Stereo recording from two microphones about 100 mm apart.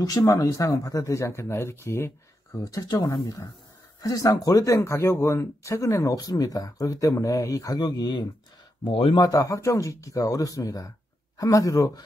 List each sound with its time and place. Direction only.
0.0 s speech: 35° left (ahead or behind)
2.6 s speech: 40° left (ahead or behind)
8.8 s speech: 60° left (ahead or behind)
9.2 s speech: 35° left (ahead or behind)